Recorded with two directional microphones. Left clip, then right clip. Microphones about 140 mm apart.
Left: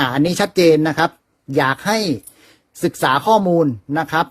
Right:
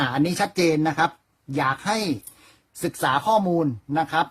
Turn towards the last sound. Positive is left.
turn(degrees=30)  # may be behind; listen again after turning